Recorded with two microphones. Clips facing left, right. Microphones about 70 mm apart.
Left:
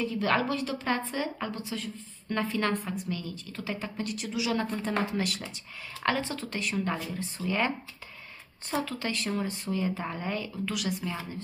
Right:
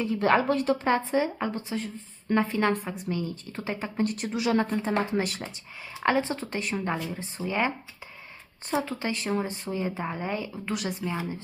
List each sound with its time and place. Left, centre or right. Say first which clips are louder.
0.0 s a woman's voice: right 4 dB; right
0.4 s a woman's voice: right 6 dB; right
4.8 s a woman's voice: right 3 dB; right
8.8 s a woman's voice: right 2 dB; right
10.7 s a woman's voice: right 3 dB; right
11.1 s speech: right 4 dB; centre